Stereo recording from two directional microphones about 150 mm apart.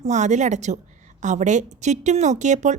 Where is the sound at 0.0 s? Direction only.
50° right (ahead or behind).